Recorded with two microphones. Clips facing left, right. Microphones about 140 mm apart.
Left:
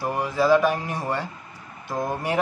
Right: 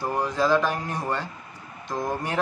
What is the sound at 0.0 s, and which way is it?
A man's voice, 5° left (ahead or behind).